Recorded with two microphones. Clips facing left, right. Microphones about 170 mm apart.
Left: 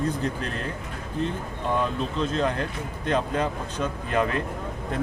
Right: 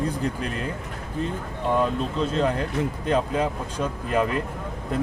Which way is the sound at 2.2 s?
5° right (ahead or behind).